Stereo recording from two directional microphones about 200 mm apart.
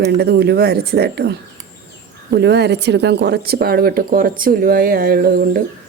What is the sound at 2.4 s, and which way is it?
Speech, 55° right (ahead or behind).